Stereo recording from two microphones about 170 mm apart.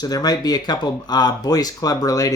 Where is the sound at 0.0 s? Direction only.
25° left (ahead or behind).